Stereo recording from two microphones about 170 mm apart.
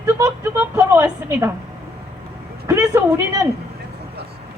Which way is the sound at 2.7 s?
15° right (ahead or behind).